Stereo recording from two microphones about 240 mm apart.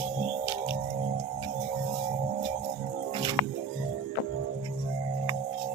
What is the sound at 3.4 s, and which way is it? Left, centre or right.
Music, left.